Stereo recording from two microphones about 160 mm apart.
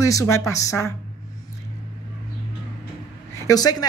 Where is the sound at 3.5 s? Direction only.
25° left (ahead or behind).